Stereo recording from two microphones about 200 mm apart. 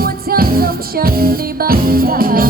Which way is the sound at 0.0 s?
50° right (ahead or behind).